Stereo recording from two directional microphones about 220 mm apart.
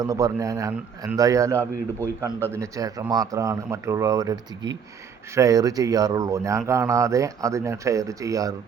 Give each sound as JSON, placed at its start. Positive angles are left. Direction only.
{"t": 0.0, "sound": "speech", "side_deg": -15}